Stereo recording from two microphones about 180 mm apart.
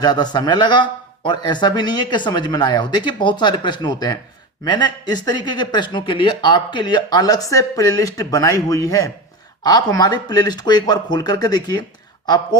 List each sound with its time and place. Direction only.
0.0 s speech: 25° left (ahead or behind)